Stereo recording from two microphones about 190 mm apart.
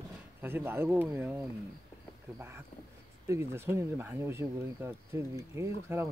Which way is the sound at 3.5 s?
15° right (ahead or behind).